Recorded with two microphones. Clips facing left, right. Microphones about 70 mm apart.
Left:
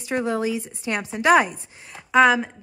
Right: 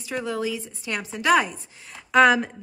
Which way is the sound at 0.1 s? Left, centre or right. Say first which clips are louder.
Left 4 dB; left.